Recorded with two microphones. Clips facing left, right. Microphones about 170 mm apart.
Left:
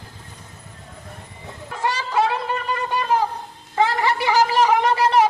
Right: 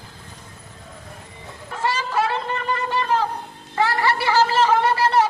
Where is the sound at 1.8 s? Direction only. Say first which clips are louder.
Left 1 dB; 15° left (ahead or behind).